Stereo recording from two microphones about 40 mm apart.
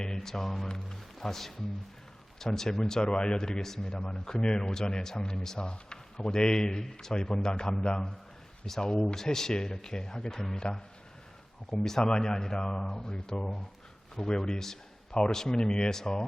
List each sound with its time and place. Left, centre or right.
0.0 s a man's voice: centre